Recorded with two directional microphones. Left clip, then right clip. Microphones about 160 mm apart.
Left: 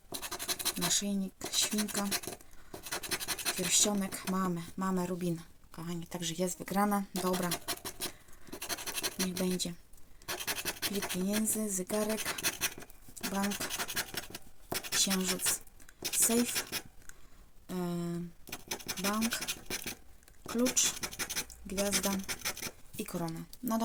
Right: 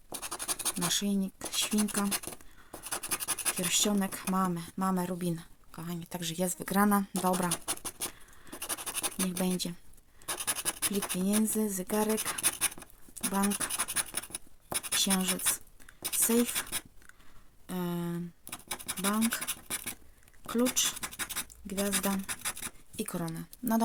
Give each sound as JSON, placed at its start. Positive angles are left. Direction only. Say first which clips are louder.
{"t": 0.1, "sound": "scratch", "louder": "even", "side_deg": -15}
{"t": 1.7, "sound": "speech", "louder": "right 2 dB", "side_deg": -15}
{"t": 2.9, "sound": "scratch", "louder": "even", "side_deg": -15}
{"t": 3.7, "sound": "speech", "louder": "right 1 dB", "side_deg": -25}
{"t": 7.3, "sound": "a sound", "louder": "right 3 dB", "side_deg": -20}
{"t": 8.5, "sound": "scratch", "louder": "even", "side_deg": -15}
{"t": 9.4, "sound": "speech", "louder": "right 2 dB", "side_deg": -25}
{"t": 10.3, "sound": "scratch", "louder": "even", "side_deg": -15}
{"t": 16.0, "sound": "writing", "louder": "right 2 dB", "side_deg": -15}
{"t": 17.7, "sound": "scratch", "louder": "right 1 dB", "side_deg": -25}
{"t": 21.7, "sound": "speech", "louder": "even", "side_deg": -15}
{"t": 23.0, "sound": "speech", "louder": "right 2 dB", "side_deg": -25}